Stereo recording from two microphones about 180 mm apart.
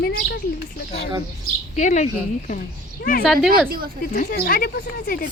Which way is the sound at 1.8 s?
40° left (ahead or behind).